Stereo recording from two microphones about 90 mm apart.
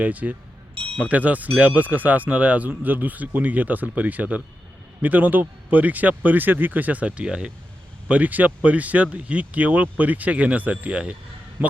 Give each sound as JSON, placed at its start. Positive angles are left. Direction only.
{"t": 0.0, "sound": "speech", "side_deg": -15}